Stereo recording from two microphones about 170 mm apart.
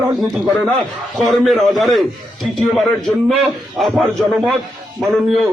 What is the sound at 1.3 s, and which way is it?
A man's voice, centre (ahead or behind).